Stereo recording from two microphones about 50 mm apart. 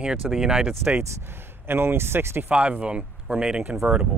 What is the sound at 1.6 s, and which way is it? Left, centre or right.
Speech, right.